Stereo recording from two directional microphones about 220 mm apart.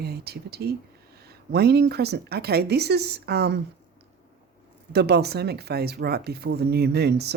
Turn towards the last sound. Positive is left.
turn(degrees=-45)  # may be behind; listen again after turning